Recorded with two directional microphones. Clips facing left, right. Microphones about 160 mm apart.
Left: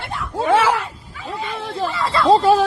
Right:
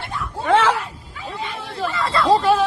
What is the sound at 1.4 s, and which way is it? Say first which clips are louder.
Hubbub: left 3 dB; 50° left (ahead or behind).